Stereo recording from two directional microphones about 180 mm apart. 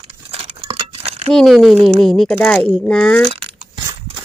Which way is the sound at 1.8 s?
35° right (ahead or behind).